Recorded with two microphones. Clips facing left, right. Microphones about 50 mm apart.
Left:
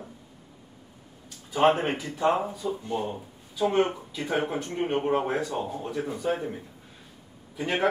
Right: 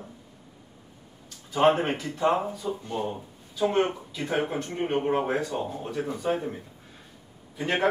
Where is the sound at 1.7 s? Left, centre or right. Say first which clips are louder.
Right 1 dB; centre.